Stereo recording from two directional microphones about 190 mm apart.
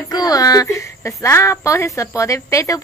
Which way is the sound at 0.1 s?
20° left (ahead or behind).